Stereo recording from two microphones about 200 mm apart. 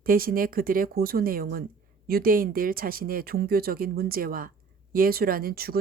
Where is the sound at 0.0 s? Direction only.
45° right (ahead or behind).